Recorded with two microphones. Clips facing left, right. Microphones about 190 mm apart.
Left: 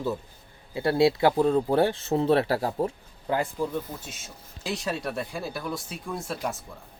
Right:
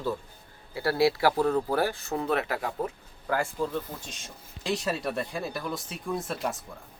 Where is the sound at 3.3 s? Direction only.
15° left (ahead or behind); by 6.6 s centre (ahead or behind).